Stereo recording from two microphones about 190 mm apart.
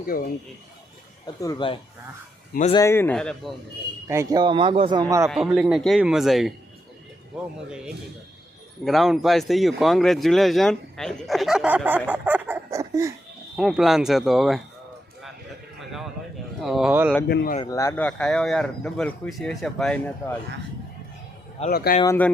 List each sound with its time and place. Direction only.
0.0 s speech: 50° left (ahead or behind)
1.4 s speech: 20° left (ahead or behind)
2.8 s speech: 10° left (ahead or behind)
4.1 s speech: 15° right (ahead or behind)
5.3 s speech: centre (ahead or behind)
8.8 s speech: centre (ahead or behind); by 13.1 s 15° right (ahead or behind)
13.6 s speech: centre (ahead or behind)
15.8 s a sound: centre (ahead or behind)
16.6 s speech: centre (ahead or behind)
17.2 s speech: 55° left (ahead or behind)
17.6 s speech: 15° left (ahead or behind)
21.7 s speech: 55° left (ahead or behind)
22.0 s speech: 15° left (ahead or behind)